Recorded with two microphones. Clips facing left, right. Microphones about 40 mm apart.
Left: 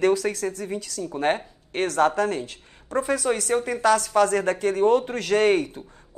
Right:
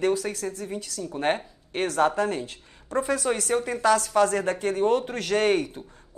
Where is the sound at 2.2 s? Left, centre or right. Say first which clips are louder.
Left 2 dB; left.